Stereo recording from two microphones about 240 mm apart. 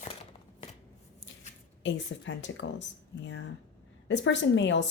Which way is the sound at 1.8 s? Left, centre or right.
Left.